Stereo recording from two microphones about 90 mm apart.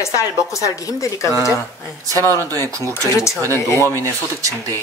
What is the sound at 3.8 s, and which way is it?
Speech, 35° right (ahead or behind).